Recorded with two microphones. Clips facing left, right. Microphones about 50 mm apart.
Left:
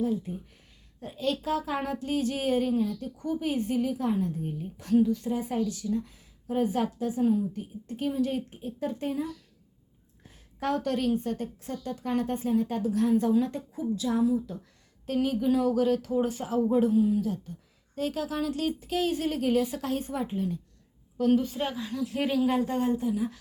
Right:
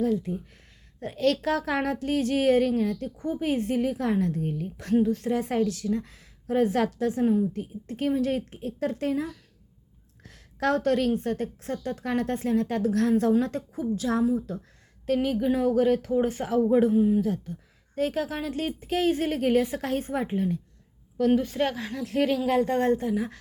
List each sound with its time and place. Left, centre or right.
0.0 s speech: right
0.9 s a woman's voice: right
3.2 s a woman's voice: right
10.2 s a woman's voice: right
13.7 s a woman's voice: right
16.9 s speech: right
17.2 s a woman's voice: right
22.7 s a woman's voice: right